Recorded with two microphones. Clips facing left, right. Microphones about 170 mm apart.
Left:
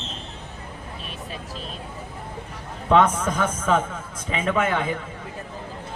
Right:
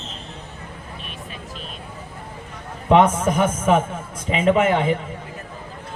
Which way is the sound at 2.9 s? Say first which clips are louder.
Right 3 dB; 20° right (ahead or behind).